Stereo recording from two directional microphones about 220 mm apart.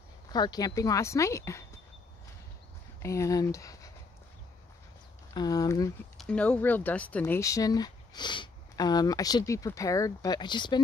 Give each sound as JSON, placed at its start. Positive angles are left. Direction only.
{"t": 0.3, "sound": "speech", "side_deg": 20}
{"t": 3.0, "sound": "speech", "side_deg": 15}
{"t": 5.3, "sound": "speech", "side_deg": 20}
{"t": 6.1, "sound": "speech", "side_deg": 5}